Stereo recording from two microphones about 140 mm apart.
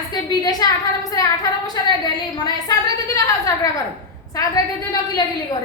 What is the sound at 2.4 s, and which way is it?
A woman's voice, 25° left (ahead or behind).